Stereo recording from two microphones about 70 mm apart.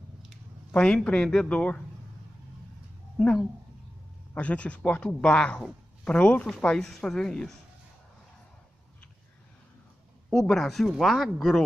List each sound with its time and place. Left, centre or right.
0.7 s speech: centre
4.3 s speech: centre
6.6 s speech: centre
10.3 s speech: centre